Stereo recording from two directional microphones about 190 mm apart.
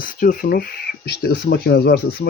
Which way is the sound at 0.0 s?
50° left (ahead or behind).